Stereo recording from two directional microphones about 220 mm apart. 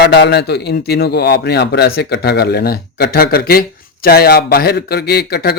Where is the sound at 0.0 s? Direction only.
50° left (ahead or behind).